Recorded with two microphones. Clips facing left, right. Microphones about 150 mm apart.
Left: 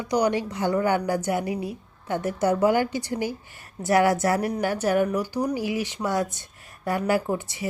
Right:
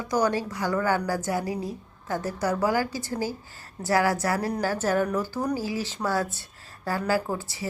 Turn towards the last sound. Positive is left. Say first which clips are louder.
# left 2 dB
turn(degrees=20)  # may be behind; listen again after turning